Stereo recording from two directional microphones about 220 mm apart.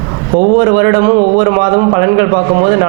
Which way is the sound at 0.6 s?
20° right (ahead or behind).